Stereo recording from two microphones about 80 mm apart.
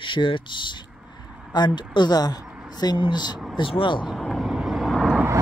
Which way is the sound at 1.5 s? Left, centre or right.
Left.